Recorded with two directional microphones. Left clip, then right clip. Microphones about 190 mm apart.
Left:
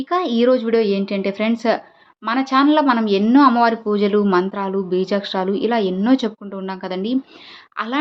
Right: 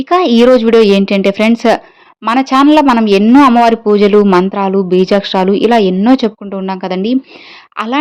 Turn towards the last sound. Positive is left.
turn(degrees=-35)  # may be behind; listen again after turning